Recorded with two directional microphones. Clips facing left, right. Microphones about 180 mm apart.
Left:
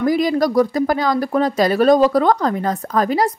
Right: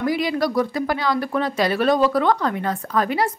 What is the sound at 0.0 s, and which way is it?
Speech, 45° left (ahead or behind).